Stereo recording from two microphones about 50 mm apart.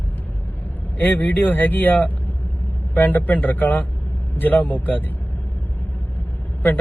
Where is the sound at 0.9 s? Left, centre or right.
Left.